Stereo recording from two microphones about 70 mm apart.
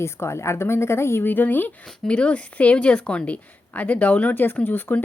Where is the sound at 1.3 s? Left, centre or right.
Left.